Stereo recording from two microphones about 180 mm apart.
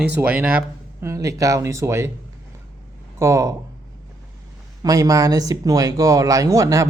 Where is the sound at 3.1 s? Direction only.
15° right (ahead or behind).